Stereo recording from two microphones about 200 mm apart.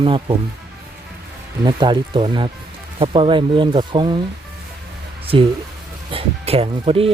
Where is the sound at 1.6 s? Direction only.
20° right (ahead or behind).